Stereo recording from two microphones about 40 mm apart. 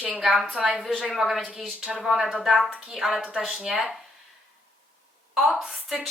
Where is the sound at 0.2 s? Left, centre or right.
Centre.